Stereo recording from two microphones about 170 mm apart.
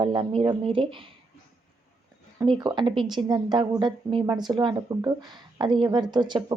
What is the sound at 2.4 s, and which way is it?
Speech, 30° right (ahead or behind).